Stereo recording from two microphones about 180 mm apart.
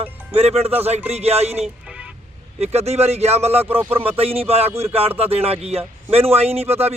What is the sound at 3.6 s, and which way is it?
Speech, 10° right (ahead or behind).